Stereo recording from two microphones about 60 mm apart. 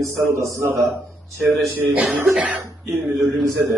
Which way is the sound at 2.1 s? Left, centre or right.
Centre.